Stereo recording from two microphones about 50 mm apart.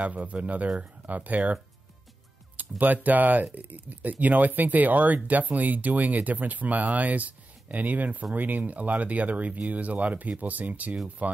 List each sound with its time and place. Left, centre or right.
0.0 s speech: right
2.5 s speech: right